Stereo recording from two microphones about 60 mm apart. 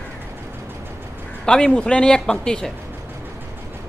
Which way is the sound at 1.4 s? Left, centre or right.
Centre.